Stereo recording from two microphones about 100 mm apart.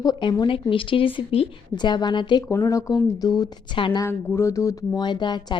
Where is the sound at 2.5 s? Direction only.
35° left (ahead or behind); by 4.0 s 50° left (ahead or behind).